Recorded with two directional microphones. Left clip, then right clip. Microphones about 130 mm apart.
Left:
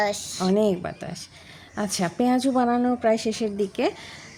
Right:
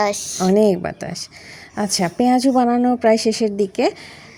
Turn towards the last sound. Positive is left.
turn(degrees=-35)  # may be behind; listen again after turning